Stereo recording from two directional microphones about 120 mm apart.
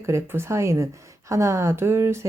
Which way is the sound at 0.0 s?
20° right (ahead or behind).